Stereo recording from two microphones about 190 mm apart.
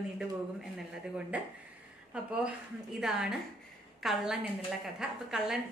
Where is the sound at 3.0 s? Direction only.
5° right (ahead or behind).